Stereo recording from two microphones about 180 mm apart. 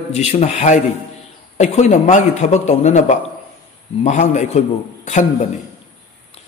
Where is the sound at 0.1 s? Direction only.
35° left (ahead or behind).